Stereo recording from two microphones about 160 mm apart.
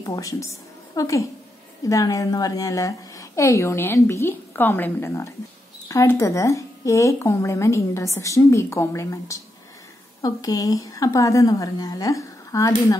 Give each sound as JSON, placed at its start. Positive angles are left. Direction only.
{"t": 0.0, "sound": "a woman's voice", "side_deg": 20}